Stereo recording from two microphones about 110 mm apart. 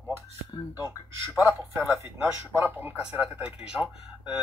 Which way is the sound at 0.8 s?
10° right (ahead or behind).